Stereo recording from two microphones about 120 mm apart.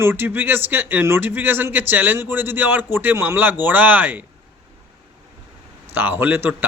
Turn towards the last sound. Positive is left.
turn(degrees=-15)  # may be behind; listen again after turning